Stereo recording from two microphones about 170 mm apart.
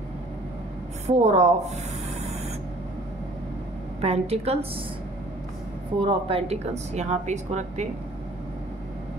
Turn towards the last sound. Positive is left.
turn(degrees=-45)  # may be behind; listen again after turning